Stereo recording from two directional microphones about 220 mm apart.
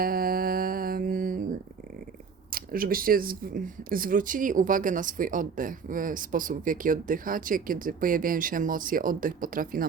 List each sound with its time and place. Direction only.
0.0 s mantra: 40° right (ahead or behind)
2.5 s speech: 40° right (ahead or behind)